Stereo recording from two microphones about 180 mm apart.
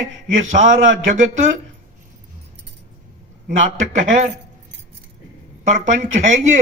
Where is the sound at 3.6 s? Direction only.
45° right (ahead or behind).